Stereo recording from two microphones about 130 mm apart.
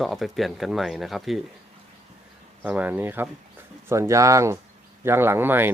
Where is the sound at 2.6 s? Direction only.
10° right (ahead or behind).